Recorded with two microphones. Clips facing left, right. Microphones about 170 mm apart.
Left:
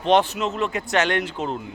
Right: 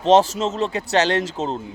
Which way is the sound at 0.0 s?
35° right (ahead or behind).